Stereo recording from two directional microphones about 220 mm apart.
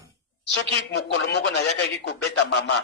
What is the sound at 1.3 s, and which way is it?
Speech, 50° left (ahead or behind).